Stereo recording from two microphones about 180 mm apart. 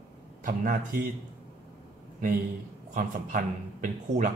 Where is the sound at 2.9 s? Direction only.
50° right (ahead or behind).